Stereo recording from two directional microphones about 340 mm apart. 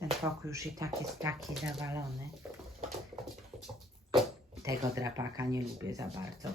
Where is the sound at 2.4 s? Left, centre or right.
Centre.